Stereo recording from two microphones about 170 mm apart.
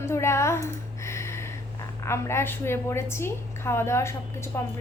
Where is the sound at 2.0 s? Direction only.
15° left (ahead or behind).